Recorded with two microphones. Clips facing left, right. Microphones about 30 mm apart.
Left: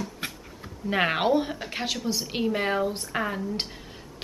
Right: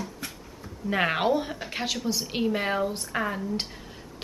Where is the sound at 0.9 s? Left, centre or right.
Centre.